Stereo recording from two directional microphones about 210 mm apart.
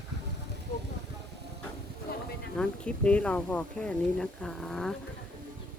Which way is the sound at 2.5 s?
5° left (ahead or behind).